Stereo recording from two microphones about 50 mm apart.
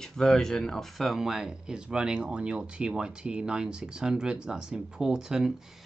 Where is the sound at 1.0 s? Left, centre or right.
Centre.